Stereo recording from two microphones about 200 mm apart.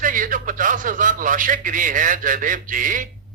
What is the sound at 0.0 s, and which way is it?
A man's voice, 40° right (ahead or behind).